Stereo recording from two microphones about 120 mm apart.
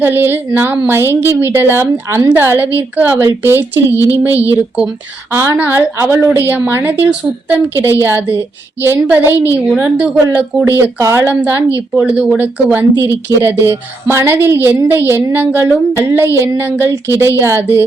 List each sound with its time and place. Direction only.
0.0 s a woman's voice: 15° right (ahead or behind)
5.3 s a woman's voice: 20° right (ahead or behind)